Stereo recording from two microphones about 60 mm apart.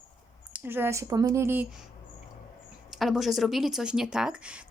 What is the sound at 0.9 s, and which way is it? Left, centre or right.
Speech, right.